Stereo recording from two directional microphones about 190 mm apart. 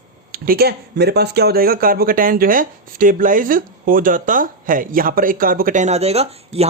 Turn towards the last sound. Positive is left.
turn(degrees=-30)  # may be behind; listen again after turning